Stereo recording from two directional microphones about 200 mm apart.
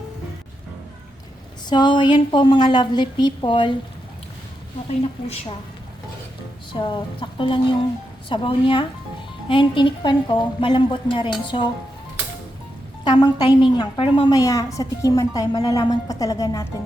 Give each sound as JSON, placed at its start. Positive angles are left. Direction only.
{"t": 1.7, "sound": "a woman's voice", "side_deg": 25}
{"t": 4.9, "sound": "a woman's voice", "side_deg": 30}
{"t": 6.7, "sound": "a woman's voice", "side_deg": 25}
{"t": 13.1, "sound": "a woman's voice", "side_deg": 20}